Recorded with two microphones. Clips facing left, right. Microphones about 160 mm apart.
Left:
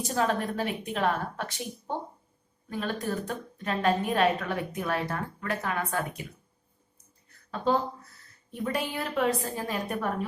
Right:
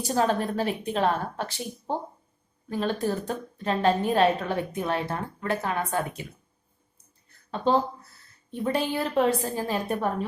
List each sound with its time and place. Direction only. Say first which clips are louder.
0.1 s a woman's voice: right 4 dB; 35° right (ahead or behind)
7.5 s a woman's voice: right 3 dB; 30° right (ahead or behind)